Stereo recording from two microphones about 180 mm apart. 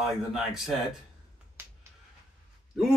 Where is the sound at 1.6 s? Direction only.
10° right (ahead or behind).